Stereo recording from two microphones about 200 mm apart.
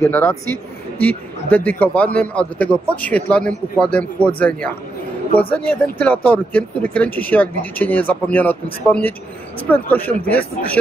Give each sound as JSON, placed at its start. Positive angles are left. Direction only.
{"t": 0.0, "sound": "a man's voice", "side_deg": 10}
{"t": 9.7, "sound": "a man's voice", "side_deg": 10}